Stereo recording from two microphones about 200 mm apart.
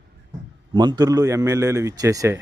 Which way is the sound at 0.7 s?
20° right (ahead or behind).